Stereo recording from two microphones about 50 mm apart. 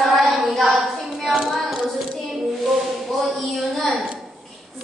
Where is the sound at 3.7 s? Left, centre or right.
Centre.